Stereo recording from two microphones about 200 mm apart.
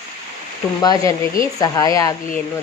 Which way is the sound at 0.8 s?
20° left (ahead or behind).